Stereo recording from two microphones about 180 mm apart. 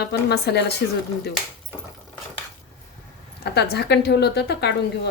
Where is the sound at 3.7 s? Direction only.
65° left (ahead or behind).